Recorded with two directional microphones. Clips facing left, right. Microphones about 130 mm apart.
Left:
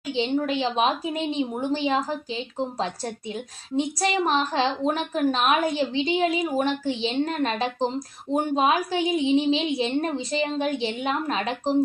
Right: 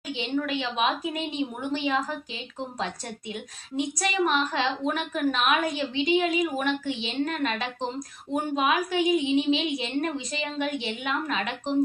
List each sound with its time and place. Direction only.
0.1 s a woman's voice: 30° left (ahead or behind)